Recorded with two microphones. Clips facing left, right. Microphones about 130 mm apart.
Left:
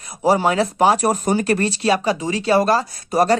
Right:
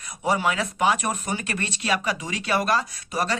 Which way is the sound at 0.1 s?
35° left (ahead or behind).